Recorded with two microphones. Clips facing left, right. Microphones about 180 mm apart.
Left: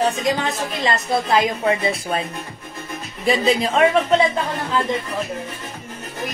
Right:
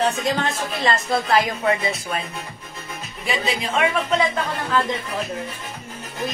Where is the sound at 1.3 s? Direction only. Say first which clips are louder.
Left 1 dB; 30° left (ahead or behind).